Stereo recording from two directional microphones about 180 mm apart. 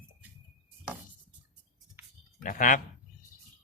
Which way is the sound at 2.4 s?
45° left (ahead or behind).